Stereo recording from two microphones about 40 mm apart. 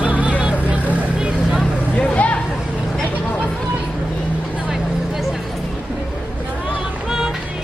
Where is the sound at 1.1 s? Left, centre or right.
Right.